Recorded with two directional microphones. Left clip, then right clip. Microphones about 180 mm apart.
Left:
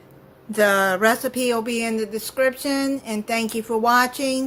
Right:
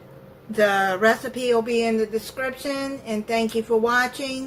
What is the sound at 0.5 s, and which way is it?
Speech, 60° left (ahead or behind).